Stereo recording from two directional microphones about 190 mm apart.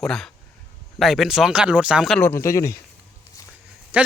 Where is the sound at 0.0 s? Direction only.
5° left (ahead or behind).